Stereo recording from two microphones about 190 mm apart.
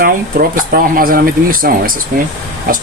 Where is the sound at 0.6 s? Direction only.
50° right (ahead or behind).